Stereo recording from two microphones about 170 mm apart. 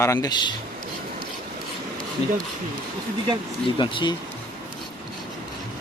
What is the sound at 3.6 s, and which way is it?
Speech, 30° left (ahead or behind).